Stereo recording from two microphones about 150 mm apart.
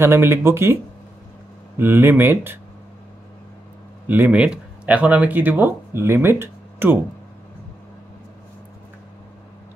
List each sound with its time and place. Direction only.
0.0 s speech: 15° right (ahead or behind)
1.8 s speech: 15° right (ahead or behind)
4.1 s speech: 10° right (ahead or behind)